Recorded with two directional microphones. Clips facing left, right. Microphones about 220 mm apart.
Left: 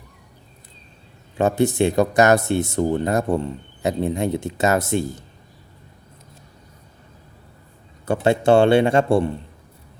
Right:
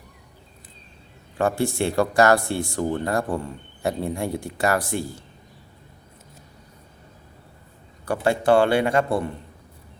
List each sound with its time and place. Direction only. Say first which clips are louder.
1.4 s speech: left 4 dB; 20° left (ahead or behind)
8.0 s speech: left 3 dB; 25° left (ahead or behind)